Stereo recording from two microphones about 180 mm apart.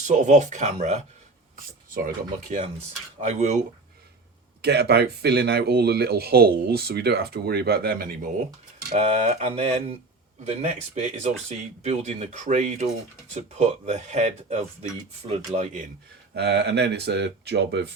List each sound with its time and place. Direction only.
0.0 s speech: 40° right (ahead or behind)
1.5 s a sound: 50° right (ahead or behind)
2.5 s speech: 40° right (ahead or behind)
4.6 s speech: 65° right (ahead or behind)
8.9 s speech: 35° right (ahead or behind)
16.3 s speech: 70° right (ahead or behind)